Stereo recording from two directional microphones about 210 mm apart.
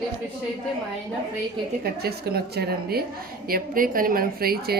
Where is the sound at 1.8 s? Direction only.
50° right (ahead or behind).